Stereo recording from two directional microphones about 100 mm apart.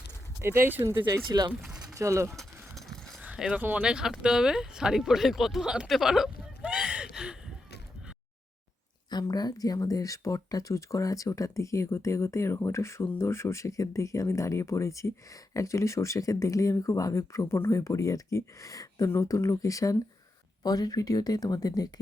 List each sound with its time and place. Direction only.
0.4 s speech: 25° right (ahead or behind)
0.8 s speech: 35° right (ahead or behind)
1.6 s pigeon: centre (ahead or behind)
2.0 s speech: 30° right (ahead or behind)
2.3 s a sound: 5° left (ahead or behind)
3.6 s speech: 15° right (ahead or behind)
9.0 s speech: 45° left (ahead or behind)